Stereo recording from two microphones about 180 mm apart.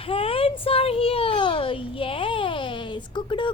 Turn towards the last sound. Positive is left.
turn(degrees=25)  # may be behind; listen again after turning